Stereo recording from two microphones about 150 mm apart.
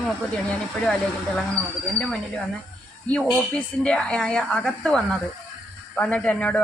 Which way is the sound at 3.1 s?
5° left (ahead or behind).